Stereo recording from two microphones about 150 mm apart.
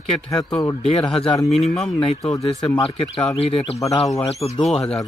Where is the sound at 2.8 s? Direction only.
35° left (ahead or behind).